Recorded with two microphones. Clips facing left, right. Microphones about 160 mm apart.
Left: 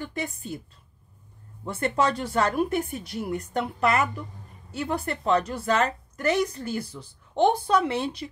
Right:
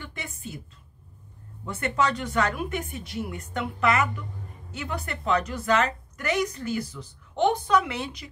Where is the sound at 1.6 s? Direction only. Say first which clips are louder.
Left 2 dB; 30° left (ahead or behind).